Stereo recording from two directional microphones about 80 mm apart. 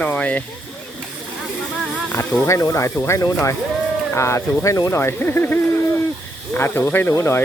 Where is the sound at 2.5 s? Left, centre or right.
Left.